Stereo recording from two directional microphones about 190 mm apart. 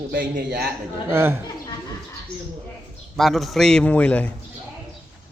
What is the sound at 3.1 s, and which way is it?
A man's voice, centre (ahead or behind).